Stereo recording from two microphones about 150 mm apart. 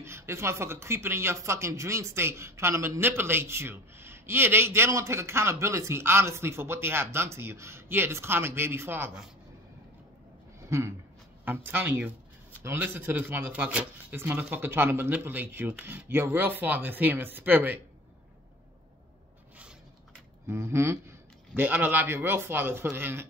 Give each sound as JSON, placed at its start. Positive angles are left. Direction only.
{"t": 0.0, "sound": "speech", "side_deg": -15}
{"t": 10.7, "sound": "speech", "side_deg": -20}
{"t": 20.4, "sound": "speech", "side_deg": -20}